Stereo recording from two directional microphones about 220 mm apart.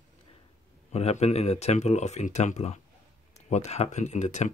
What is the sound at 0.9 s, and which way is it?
Speech, 30° left (ahead or behind).